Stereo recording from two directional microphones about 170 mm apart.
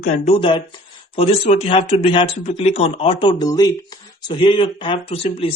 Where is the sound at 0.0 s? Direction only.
40° left (ahead or behind).